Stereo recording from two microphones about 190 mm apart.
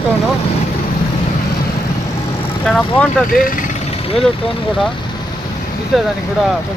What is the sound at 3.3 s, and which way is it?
Vehicle, 45° left (ahead or behind).